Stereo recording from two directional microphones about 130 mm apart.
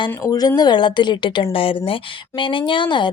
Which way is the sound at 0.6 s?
35° left (ahead or behind).